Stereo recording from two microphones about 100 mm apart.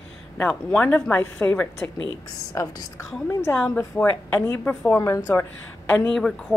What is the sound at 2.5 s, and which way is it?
Speech, 35° left (ahead or behind).